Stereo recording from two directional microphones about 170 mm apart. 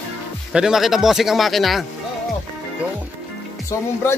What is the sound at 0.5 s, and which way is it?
Speech, 5° right (ahead or behind).